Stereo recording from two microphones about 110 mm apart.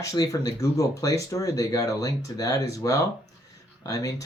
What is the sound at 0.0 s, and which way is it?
Speech, 30° left (ahead or behind).